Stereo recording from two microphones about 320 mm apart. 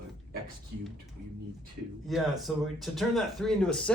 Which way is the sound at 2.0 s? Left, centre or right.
Centre.